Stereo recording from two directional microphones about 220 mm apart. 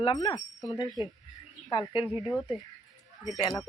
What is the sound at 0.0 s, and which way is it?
Speech, 20° left (ahead or behind).